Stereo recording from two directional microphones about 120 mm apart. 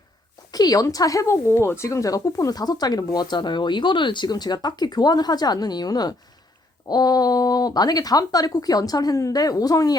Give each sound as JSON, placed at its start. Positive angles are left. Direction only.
{"t": 0.5, "sound": "speech", "side_deg": 30}